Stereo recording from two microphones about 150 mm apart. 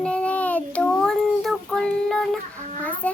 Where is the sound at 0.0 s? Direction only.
10° left (ahead or behind).